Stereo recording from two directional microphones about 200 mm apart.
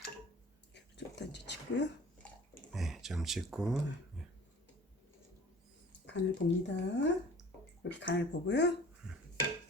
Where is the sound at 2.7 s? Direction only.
Centre (ahead or behind).